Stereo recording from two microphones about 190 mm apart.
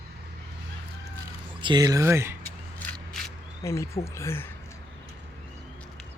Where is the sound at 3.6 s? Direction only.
15° left (ahead or behind).